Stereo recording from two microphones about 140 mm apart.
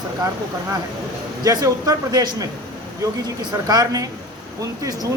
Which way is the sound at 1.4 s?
25° right (ahead or behind).